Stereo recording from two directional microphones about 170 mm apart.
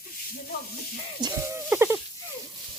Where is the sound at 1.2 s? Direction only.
15° right (ahead or behind).